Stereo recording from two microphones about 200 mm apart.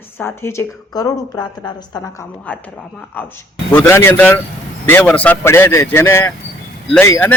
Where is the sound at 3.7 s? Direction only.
10° left (ahead or behind).